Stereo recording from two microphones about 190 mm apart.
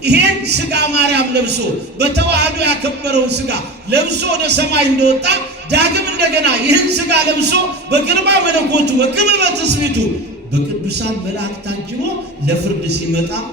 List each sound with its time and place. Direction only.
0.0 s a man's voice: 60° right (ahead or behind)